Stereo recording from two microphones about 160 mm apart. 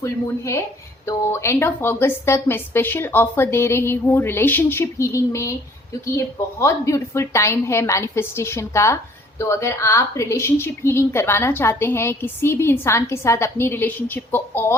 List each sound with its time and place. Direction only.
0.0 s a woman's voice: 20° left (ahead or behind)